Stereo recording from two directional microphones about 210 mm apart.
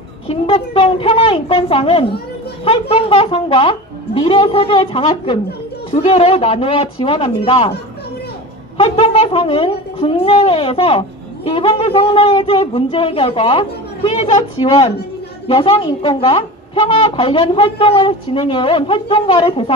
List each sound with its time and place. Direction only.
0.3 s a woman's voice: 25° left (ahead or behind)
8.7 s a woman's voice: 30° left (ahead or behind)